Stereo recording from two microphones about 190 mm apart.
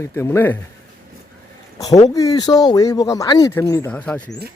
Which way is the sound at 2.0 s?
20° left (ahead or behind).